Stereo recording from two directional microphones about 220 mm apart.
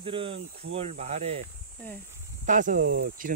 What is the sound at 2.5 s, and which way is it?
Speech, 35° right (ahead or behind).